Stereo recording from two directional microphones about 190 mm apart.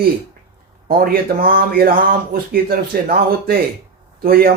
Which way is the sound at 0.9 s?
50° right (ahead or behind).